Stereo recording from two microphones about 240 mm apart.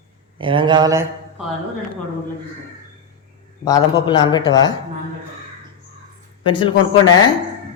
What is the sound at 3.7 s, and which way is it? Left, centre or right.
Speech, centre.